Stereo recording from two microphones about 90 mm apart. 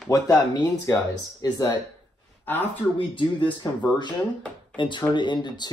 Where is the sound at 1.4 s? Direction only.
45° left (ahead or behind).